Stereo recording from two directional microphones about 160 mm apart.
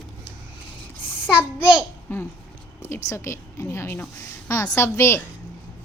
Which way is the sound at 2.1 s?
15° left (ahead or behind).